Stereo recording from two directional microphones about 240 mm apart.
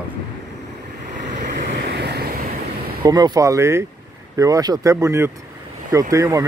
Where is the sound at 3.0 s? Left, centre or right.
Centre.